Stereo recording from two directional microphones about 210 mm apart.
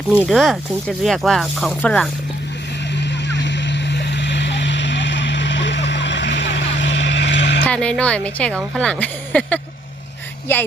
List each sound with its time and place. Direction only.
0.1 s speech: 5° right (ahead or behind)
2.9 s vehicle: 55° left (ahead or behind)
7.6 s speech: 5° left (ahead or behind)